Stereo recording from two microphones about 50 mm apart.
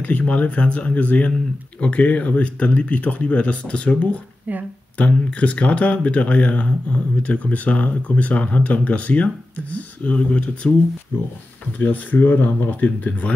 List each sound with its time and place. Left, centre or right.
0.0 s speech: left
11.1 s speech: left